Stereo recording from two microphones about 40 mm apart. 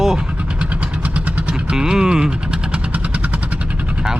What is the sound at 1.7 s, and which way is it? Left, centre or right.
Speech, centre.